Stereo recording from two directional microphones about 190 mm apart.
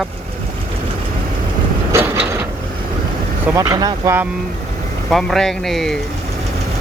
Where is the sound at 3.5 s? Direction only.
20° right (ahead or behind).